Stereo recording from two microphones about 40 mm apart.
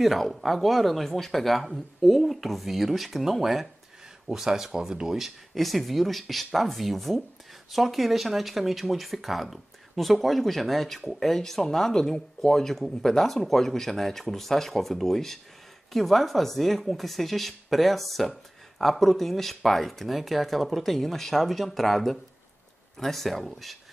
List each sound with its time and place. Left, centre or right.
0.0 s speech: centre